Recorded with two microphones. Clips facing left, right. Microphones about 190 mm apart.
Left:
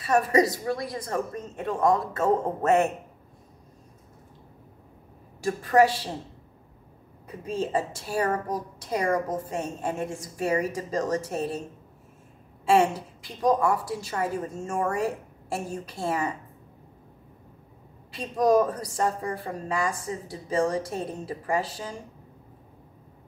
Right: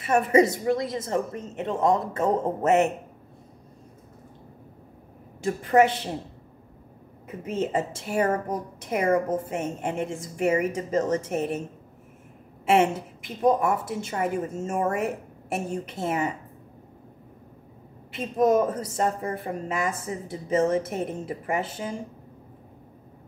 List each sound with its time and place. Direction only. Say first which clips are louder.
0.0 s a woman's voice: right 2 dB; 20° right (ahead or behind)
5.4 s a woman's voice: right 1 dB; 20° right (ahead or behind)
7.2 s a woman's voice: right 2 dB; 20° right (ahead or behind)
12.6 s a woman's voice: even; 20° right (ahead or behind)
18.1 s a woman's voice: even; 20° right (ahead or behind)